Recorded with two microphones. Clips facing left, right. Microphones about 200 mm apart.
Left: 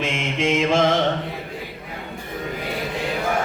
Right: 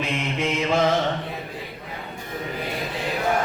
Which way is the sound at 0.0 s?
90° left.